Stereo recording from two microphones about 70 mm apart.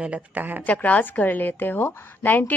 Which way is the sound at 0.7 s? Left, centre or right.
Left.